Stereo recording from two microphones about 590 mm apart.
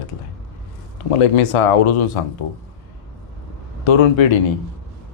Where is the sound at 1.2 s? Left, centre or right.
Left.